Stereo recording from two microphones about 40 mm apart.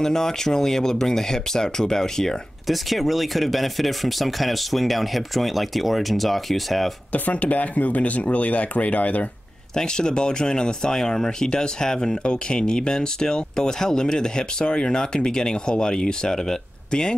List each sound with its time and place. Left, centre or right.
0.0 s speech: centre
2.6 s speech: centre
7.1 s speech: left
9.8 s speech: centre